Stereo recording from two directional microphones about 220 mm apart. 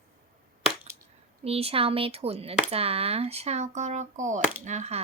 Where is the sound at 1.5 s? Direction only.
25° right (ahead or behind).